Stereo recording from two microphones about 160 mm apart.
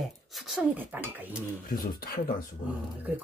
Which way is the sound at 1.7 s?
60° left (ahead or behind).